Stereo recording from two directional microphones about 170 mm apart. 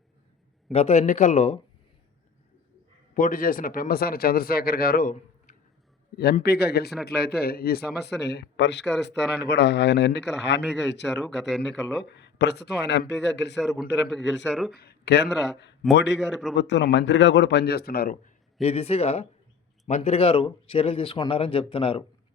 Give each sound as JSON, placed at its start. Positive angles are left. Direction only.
{"t": 0.7, "sound": "speech", "side_deg": 40}
{"t": 3.2, "sound": "speech", "side_deg": 50}
{"t": 6.1, "sound": "a man's voice", "side_deg": 70}
{"t": 8.2, "sound": "speech", "side_deg": 85}
{"t": 13.6, "sound": "speech", "side_deg": 0}
{"t": 14.7, "sound": "speech", "side_deg": 70}
{"t": 16.1, "sound": "speech", "side_deg": 0}
{"t": 16.6, "sound": "speech", "side_deg": 90}
{"t": 18.6, "sound": "speech", "side_deg": 35}